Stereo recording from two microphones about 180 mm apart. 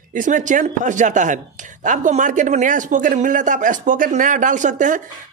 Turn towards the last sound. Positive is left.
turn(degrees=-45)  # may be behind; listen again after turning